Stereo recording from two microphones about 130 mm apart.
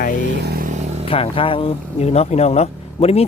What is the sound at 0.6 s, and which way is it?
Vehicle, 70° right (ahead or behind).